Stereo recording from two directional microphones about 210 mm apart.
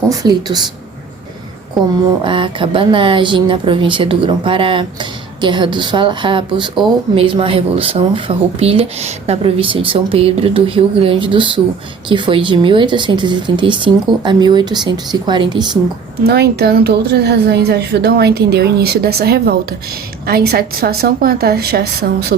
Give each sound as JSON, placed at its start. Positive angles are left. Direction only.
{"t": 0.1, "sound": "speech", "side_deg": -15}
{"t": 2.2, "sound": "speech", "side_deg": -25}
{"t": 16.2, "sound": "a woman's voice", "side_deg": -50}